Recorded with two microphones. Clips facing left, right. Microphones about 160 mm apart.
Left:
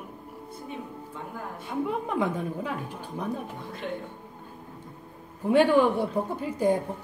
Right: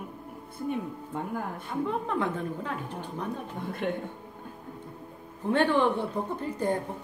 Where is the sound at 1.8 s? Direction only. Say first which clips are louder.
Left 2 dB; 15° left (ahead or behind).